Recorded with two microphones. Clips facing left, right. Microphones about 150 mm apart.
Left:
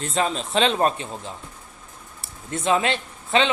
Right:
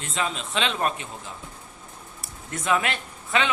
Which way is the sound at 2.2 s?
25° left (ahead or behind).